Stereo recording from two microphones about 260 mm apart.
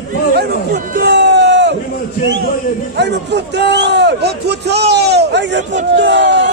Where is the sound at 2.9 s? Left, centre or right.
Right.